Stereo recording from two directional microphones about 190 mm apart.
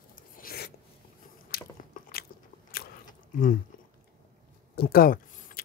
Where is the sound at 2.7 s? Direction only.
45° left (ahead or behind).